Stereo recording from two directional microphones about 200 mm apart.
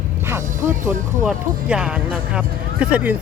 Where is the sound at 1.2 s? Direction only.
5° right (ahead or behind).